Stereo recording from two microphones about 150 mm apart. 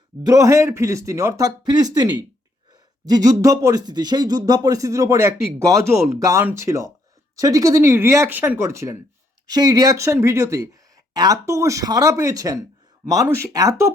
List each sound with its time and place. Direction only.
0.2 s speech: 20° right (ahead or behind)